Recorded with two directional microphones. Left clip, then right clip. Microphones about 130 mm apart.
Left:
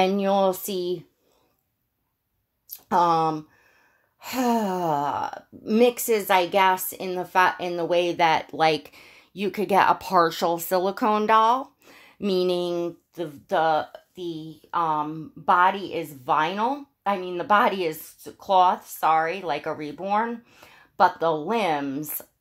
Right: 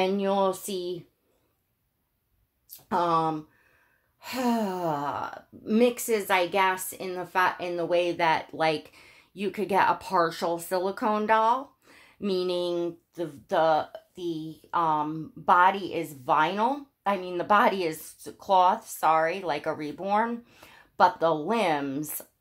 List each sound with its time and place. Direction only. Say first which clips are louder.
0.0 s speech: left 4 dB; 55° left (ahead or behind)
2.9 s speech: left 4 dB; 55° left (ahead or behind); by 22.2 s 20° left (ahead or behind)